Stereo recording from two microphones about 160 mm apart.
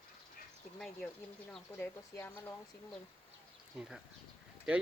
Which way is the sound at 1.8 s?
15° left (ahead or behind).